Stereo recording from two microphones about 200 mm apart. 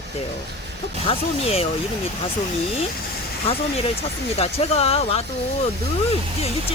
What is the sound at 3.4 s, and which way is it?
Speech, 30° left (ahead or behind).